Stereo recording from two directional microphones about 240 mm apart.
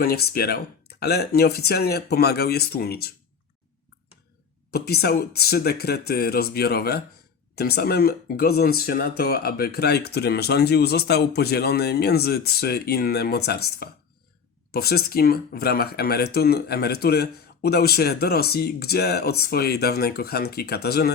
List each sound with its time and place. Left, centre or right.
0.0 s speech: left
4.7 s speech: left